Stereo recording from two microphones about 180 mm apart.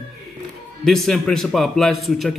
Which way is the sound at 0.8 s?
Centre (ahead or behind).